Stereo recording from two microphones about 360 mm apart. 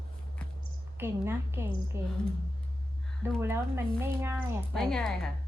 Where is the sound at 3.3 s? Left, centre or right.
Centre.